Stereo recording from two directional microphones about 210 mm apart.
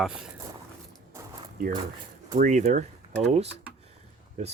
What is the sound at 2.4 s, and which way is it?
Speech, 35° right (ahead or behind).